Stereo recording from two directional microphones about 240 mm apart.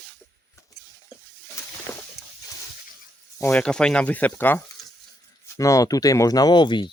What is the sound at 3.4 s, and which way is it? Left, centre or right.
Speech, centre.